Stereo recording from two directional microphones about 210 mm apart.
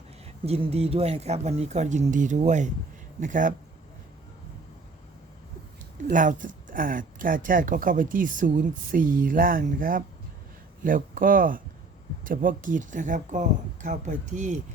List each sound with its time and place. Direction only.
0.4 s speech: 30° right (ahead or behind)
6.1 s speech: 40° right (ahead or behind)